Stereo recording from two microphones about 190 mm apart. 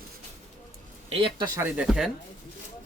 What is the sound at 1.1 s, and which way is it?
Speech, 30° right (ahead or behind).